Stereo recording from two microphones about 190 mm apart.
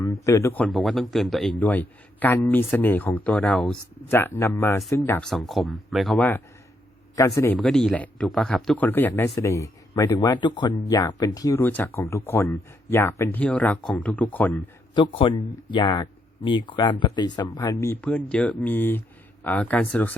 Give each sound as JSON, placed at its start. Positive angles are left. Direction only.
{"t": 0.0, "sound": "speech", "side_deg": 15}
{"t": 7.6, "sound": "speech", "side_deg": 5}
{"t": 14.9, "sound": "speech", "side_deg": 25}